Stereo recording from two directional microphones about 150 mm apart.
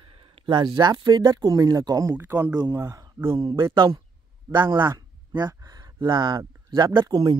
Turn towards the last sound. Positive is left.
turn(degrees=-30)  # may be behind; listen again after turning